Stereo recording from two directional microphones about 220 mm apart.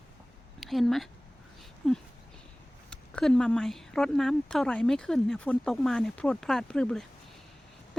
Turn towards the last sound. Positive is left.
turn(degrees=5)  # may be behind; listen again after turning